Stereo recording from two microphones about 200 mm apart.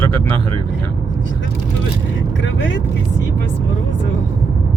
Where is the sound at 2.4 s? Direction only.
65° left (ahead or behind).